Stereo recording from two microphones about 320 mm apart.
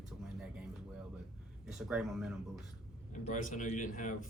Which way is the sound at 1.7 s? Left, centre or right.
Centre.